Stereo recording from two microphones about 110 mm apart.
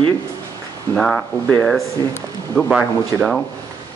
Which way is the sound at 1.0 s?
5° left (ahead or behind).